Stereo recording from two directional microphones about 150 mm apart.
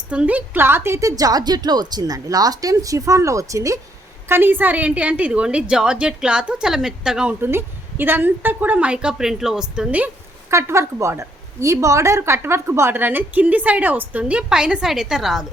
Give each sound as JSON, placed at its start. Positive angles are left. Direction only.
{"t": 0.1, "sound": "a woman's voice", "side_deg": -10}
{"t": 10.5, "sound": "a woman's voice", "side_deg": -20}